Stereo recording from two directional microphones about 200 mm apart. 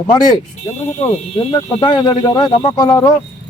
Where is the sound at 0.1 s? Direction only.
20° left (ahead or behind).